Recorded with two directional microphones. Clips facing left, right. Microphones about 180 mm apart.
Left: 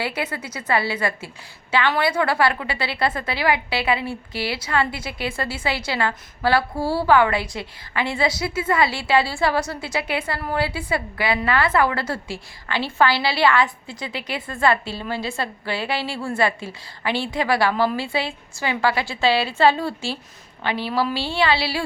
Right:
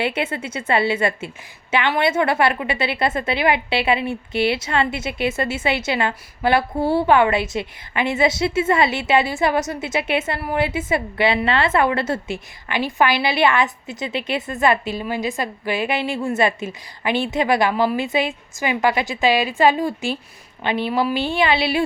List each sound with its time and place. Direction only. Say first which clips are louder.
0.0 s a woman's voice: right 4 dB; 25° right (ahead or behind)